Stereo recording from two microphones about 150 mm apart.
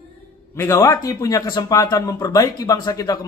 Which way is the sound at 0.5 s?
20° left (ahead or behind).